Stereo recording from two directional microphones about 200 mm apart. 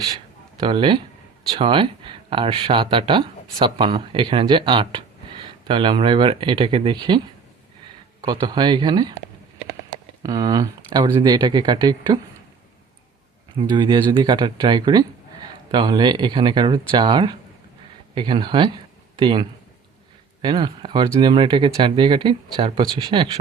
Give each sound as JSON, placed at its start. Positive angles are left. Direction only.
{"t": 0.6, "sound": "speech", "side_deg": -25}
{"t": 8.2, "sound": "speech", "side_deg": -20}
{"t": 10.2, "sound": "speech", "side_deg": -20}
{"t": 13.6, "sound": "speech", "side_deg": -20}